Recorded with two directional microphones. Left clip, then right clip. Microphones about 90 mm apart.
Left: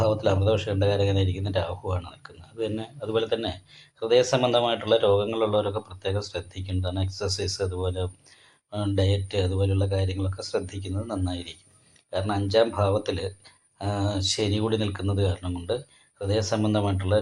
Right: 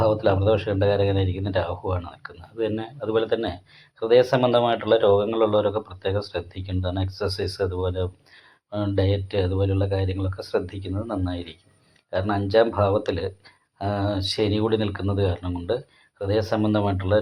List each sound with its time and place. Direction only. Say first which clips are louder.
0.0 s speech: right 3 dB; 40° right (ahead or behind)